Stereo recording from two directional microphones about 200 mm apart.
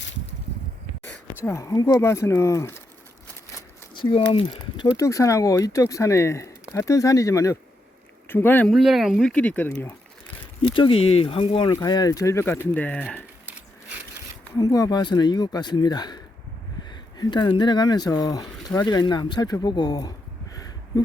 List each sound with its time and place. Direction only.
0.0 s a sound: 65° left (ahead or behind)
1.5 s speech: 15° left (ahead or behind)
4.3 s speech: 25° left (ahead or behind)
8.7 s speech: centre (ahead or behind)
10.8 s speech: 25° left (ahead or behind); by 13.2 s 5° left (ahead or behind)
14.6 s speech: 20° left (ahead or behind)